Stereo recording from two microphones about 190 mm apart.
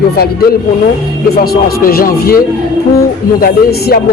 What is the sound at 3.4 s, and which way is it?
Speech, 55° left (ahead or behind).